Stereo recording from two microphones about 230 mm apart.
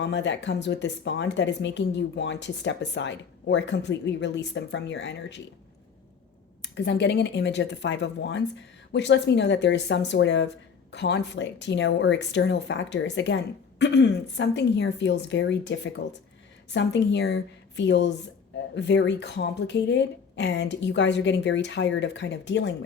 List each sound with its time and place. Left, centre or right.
0.0 s speech: left
6.6 s speech: left